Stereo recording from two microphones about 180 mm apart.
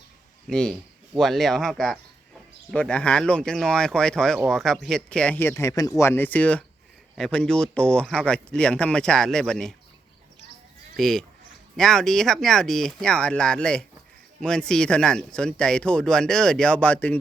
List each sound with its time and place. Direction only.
0.4 s speech: 5° left (ahead or behind)
10.9 s speech: 5° left (ahead or behind)